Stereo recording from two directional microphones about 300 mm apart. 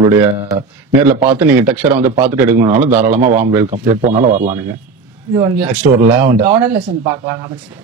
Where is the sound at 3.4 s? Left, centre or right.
Centre.